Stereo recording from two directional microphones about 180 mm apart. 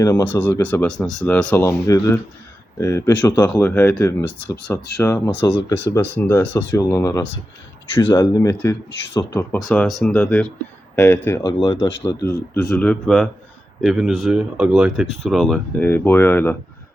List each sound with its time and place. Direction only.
0.0 s speech: 20° left (ahead or behind)
8.9 s speech: 75° left (ahead or behind)
9.3 s speech: 15° left (ahead or behind)
11.4 s speech: 25° left (ahead or behind)